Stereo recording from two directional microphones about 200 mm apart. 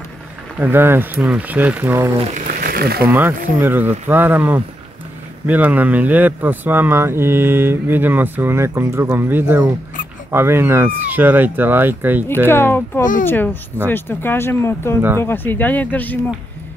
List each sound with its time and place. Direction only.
0.6 s speech: 10° right (ahead or behind)
2.1 s speech: 40° right (ahead or behind)
3.1 s speech: 10° right (ahead or behind)
12.4 s speech: 10° left (ahead or behind)